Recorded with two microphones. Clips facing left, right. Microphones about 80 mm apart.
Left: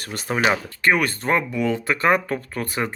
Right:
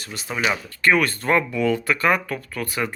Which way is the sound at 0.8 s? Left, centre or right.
Left.